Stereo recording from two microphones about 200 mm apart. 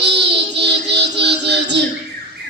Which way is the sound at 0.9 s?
60° right (ahead or behind).